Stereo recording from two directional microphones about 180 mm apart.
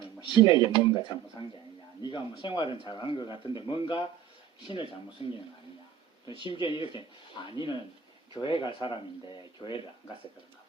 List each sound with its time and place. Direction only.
0.4 s speech: 30° left (ahead or behind)
6.5 s speech: 30° left (ahead or behind)